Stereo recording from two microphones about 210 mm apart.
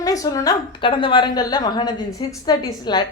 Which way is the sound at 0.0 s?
15° left (ahead or behind).